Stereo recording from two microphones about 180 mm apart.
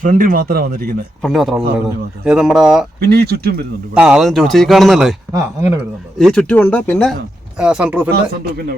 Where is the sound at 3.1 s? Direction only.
65° right (ahead or behind).